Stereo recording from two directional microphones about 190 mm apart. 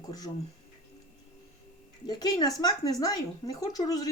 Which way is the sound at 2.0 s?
20° left (ahead or behind).